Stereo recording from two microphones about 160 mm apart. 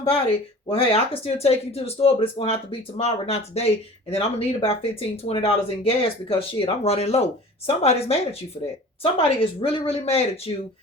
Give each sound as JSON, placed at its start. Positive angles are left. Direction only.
{"t": 0.7, "sound": "speech", "side_deg": 35}